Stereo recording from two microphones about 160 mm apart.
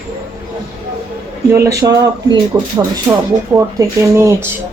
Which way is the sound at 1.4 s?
15° right (ahead or behind).